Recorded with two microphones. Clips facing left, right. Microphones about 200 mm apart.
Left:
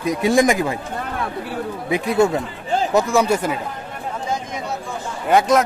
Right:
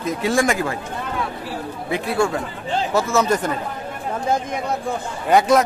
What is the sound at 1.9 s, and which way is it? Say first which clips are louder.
Speech: left 3 dB; 20° left (ahead or behind).